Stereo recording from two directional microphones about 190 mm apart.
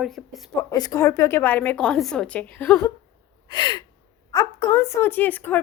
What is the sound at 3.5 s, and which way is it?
Gasp, 25° left (ahead or behind).